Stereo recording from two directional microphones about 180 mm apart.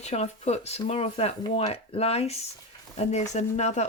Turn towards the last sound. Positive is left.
turn(degrees=40)  # may be behind; listen again after turning